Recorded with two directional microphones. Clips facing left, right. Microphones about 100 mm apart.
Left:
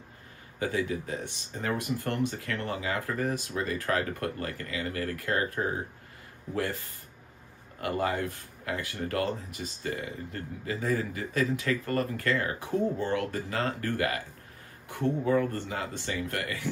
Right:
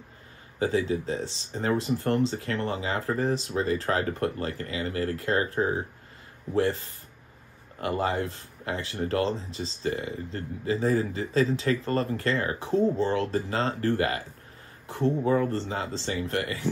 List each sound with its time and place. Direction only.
0.6 s speech: 25° right (ahead or behind)
7.8 s speech: 25° right (ahead or behind)